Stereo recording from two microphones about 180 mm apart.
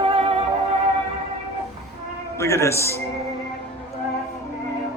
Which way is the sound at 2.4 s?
15° left (ahead or behind).